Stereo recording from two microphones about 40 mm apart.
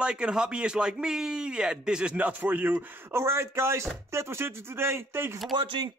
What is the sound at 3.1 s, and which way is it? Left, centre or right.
Speech, right.